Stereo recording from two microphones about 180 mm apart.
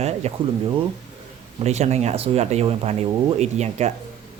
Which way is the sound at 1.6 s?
40° right (ahead or behind).